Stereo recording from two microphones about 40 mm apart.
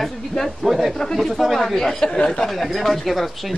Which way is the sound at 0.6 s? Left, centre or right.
Centre.